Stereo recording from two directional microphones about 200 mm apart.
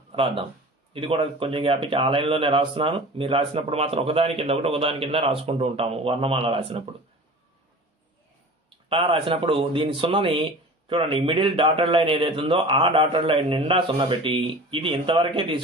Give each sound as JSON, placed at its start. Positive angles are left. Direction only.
{"t": 0.1, "sound": "speech", "side_deg": -25}
{"t": 8.8, "sound": "speech", "side_deg": -25}